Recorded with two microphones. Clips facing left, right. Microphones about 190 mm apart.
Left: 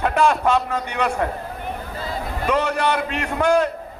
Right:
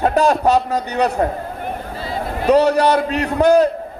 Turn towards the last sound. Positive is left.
turn(degrees=-40)  # may be behind; listen again after turning